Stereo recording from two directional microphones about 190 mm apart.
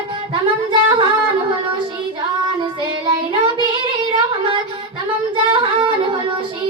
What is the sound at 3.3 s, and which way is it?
Child singing, 25° right (ahead or behind).